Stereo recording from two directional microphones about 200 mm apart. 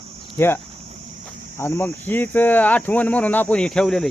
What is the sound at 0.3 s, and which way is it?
Speech, 10° left (ahead or behind).